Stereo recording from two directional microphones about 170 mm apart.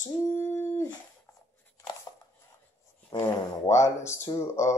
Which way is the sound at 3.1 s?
15° left (ahead or behind).